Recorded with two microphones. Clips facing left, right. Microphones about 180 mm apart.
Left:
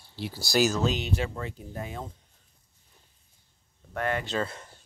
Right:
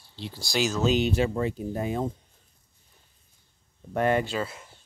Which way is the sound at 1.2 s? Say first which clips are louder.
Right 9 dB; 20° right (ahead or behind).